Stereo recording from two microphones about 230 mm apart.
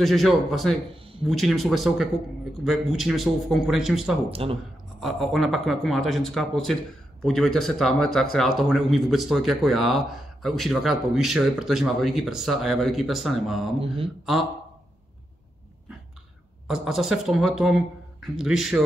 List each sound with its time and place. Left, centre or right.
0.0 s speech: centre
4.3 s speech: right
5.0 s speech: centre
16.6 s speech: centre